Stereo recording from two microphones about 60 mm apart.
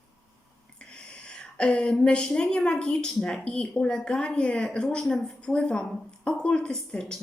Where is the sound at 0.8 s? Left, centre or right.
Centre.